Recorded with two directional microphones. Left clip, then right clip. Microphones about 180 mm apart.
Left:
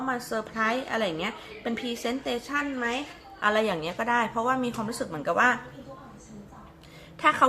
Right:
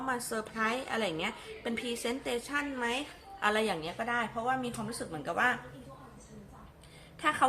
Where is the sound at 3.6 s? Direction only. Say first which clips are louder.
Left 6 dB; 20° left (ahead or behind).